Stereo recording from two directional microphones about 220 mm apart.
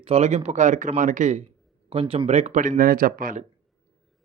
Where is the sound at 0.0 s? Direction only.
30° right (ahead or behind).